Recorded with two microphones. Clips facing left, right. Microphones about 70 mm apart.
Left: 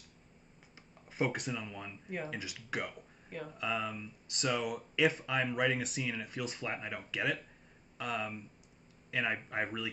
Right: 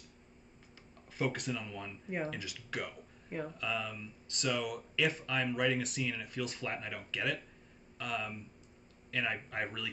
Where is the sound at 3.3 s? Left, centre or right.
Centre.